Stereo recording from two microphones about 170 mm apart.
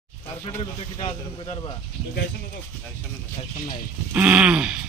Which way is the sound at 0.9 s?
35° left (ahead or behind).